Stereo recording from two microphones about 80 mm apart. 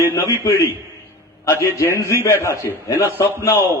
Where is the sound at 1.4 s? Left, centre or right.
Left.